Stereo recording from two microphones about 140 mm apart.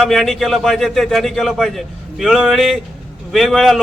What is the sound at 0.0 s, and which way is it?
A man's voice, centre (ahead or behind).